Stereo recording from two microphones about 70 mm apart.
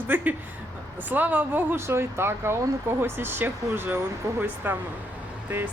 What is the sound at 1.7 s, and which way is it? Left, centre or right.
A woman's voice, right.